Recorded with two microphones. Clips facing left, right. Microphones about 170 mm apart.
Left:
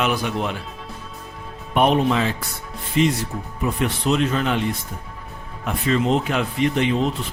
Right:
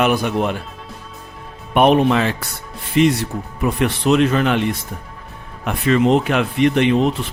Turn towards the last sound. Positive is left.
turn(degrees=-65)  # may be behind; listen again after turning